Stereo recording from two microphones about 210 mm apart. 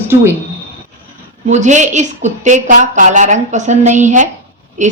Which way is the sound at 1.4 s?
35° right (ahead or behind).